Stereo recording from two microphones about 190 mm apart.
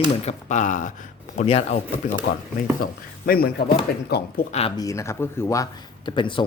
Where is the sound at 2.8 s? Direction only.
50° left (ahead or behind).